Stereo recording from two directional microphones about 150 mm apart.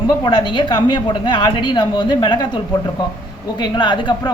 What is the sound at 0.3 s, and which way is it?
A woman's voice, 30° left (ahead or behind).